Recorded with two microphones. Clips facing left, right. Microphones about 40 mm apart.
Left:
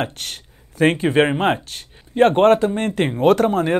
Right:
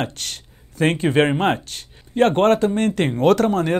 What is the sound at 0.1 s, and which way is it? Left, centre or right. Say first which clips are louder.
Speech: even; centre.